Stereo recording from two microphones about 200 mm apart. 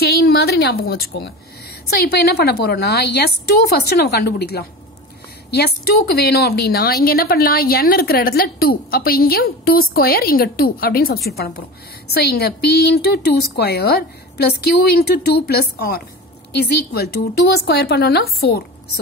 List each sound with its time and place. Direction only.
0.0 s a woman's voice: 50° left (ahead or behind)